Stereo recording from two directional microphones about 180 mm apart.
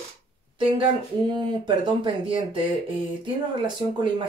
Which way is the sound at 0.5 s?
30° right (ahead or behind).